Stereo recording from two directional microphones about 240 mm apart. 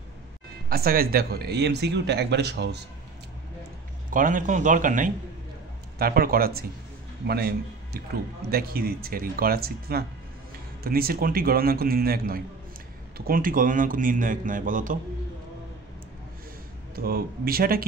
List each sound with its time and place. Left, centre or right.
0.7 s speech: right
4.1 s a man's voice: right
16.9 s a man's voice: right